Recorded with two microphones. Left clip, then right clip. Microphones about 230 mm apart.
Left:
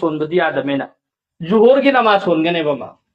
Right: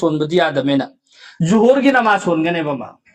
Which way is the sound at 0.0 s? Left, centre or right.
Right.